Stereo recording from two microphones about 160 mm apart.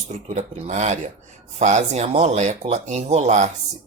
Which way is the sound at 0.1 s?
45° right (ahead or behind).